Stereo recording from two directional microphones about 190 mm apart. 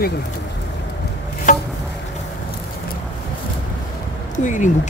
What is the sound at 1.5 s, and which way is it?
Insect, 40° left (ahead or behind).